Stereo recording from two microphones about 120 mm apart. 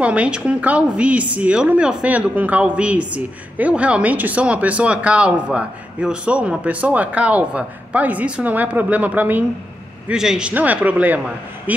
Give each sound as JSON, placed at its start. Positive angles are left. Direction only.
{"t": 0.0, "sound": "a woman's voice", "side_deg": -10}